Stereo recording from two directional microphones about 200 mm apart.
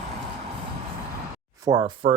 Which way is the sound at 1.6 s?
20° right (ahead or behind).